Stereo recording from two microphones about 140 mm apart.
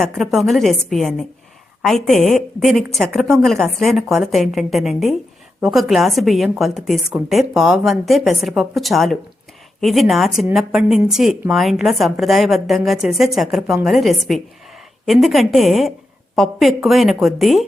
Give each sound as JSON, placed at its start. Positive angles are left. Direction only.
{"t": 0.0, "sound": "speech", "side_deg": 0}